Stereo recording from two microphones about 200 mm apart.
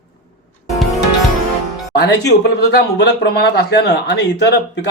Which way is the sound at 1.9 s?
55° left (ahead or behind).